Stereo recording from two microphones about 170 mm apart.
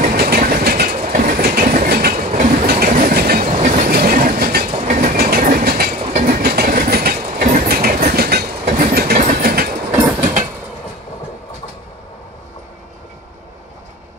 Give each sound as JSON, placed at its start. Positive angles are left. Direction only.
{"t": 0.1, "sound": "train", "side_deg": -65}
{"t": 0.9, "sound": "train", "side_deg": -45}
{"t": 3.5, "sound": "train", "side_deg": -50}
{"t": 4.6, "sound": "train", "side_deg": -45}
{"t": 5.1, "sound": "train", "side_deg": -65}